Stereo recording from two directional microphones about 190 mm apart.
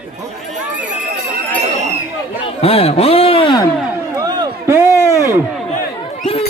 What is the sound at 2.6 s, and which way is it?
Speech, 30° left (ahead or behind).